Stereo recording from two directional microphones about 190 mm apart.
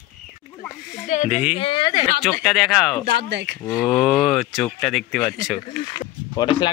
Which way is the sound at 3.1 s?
60° right (ahead or behind).